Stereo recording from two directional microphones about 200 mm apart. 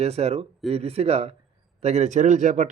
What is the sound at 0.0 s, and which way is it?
A man's voice, 30° right (ahead or behind).